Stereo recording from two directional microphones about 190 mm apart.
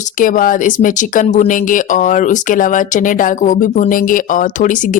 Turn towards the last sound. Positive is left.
turn(degrees=40)  # may be behind; listen again after turning